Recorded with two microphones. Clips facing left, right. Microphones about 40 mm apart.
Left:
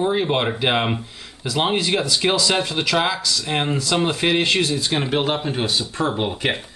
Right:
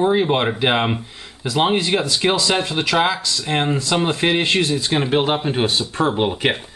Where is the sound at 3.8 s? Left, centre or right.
Centre.